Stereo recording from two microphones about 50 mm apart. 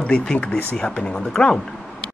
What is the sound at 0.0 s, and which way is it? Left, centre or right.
Speech, left.